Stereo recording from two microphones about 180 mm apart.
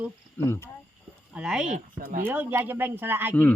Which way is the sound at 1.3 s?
5° right (ahead or behind).